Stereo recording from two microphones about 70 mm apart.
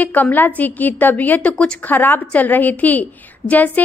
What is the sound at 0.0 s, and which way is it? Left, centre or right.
A woman's voice, left.